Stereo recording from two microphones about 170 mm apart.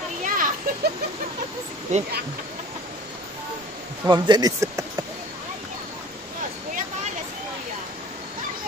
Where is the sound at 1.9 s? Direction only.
40° right (ahead or behind).